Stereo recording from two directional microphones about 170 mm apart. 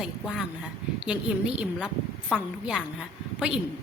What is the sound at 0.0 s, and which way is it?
A woman's voice, 5° right (ahead or behind).